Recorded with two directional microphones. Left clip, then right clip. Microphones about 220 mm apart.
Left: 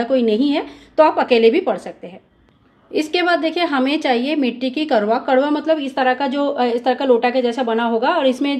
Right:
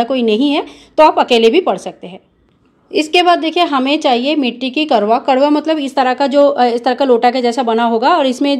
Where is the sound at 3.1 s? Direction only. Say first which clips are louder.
Right 7 dB; 25° right (ahead or behind).